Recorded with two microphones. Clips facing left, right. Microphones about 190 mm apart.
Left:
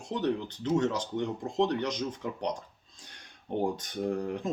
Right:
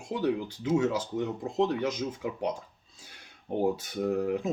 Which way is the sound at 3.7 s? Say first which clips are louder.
Right 3 dB; 5° right (ahead or behind).